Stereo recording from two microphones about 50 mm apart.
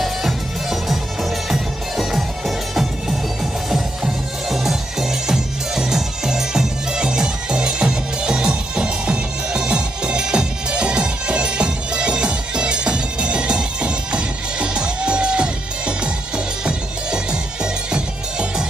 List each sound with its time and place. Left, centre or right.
0.0 s music: centre